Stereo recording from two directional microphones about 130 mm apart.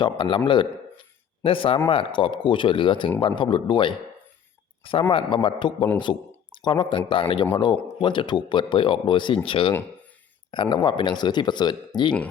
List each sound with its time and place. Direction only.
0.0 s a man's voice: 40° left (ahead or behind)